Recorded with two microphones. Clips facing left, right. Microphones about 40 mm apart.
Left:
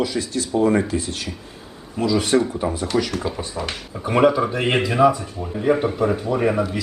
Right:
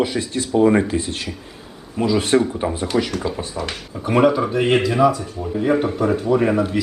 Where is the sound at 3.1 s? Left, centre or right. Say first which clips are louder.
Right 1 dB; centre.